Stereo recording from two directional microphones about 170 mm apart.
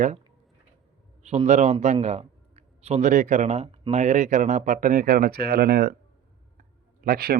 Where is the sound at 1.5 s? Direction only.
45° right (ahead or behind); by 5.9 s 65° right (ahead or behind).